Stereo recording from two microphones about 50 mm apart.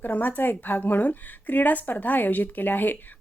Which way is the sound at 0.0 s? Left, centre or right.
Left.